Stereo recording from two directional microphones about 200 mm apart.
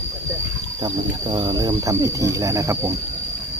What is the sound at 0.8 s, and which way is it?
Speech, 20° right (ahead or behind).